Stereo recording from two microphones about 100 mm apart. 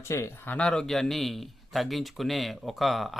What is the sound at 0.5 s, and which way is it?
Speech, 5° left (ahead or behind).